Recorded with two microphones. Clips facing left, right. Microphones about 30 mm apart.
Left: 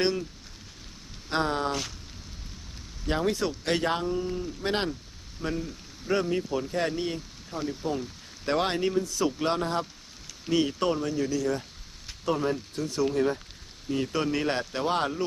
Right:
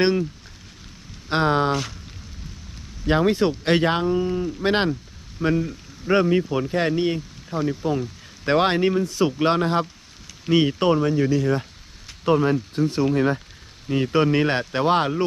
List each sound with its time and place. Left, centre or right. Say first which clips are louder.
0.0 s speech: right 7 dB; right
1.3 s speech: right 7 dB; right
1.7 s speech: right 7 dB; centre
3.1 s speech: right 8 dB; right